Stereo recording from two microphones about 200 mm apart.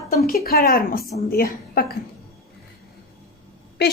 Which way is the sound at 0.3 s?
50° left (ahead or behind).